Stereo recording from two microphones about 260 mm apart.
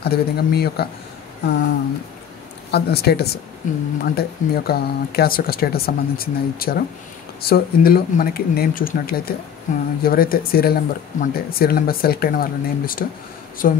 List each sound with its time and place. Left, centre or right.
0.0 s speech: left
2.7 s speech: left